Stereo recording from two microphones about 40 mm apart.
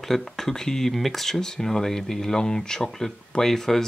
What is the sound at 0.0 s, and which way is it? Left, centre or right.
Speech, centre.